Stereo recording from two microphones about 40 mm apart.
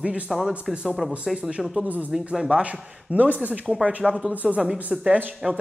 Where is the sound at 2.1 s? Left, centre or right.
Centre.